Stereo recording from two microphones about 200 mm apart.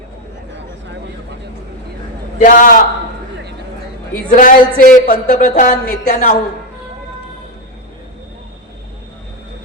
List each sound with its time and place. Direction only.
2.4 s speech: 40° left (ahead or behind)
4.3 s speech: 40° left (ahead or behind)